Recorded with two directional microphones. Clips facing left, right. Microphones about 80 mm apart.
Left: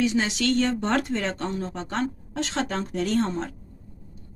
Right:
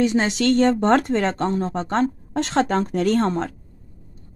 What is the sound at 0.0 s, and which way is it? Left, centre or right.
Speech, right.